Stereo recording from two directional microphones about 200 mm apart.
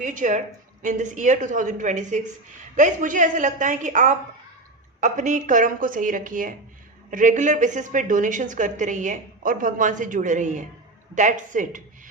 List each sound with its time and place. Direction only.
0.0 s a woman's voice: 40° right (ahead or behind)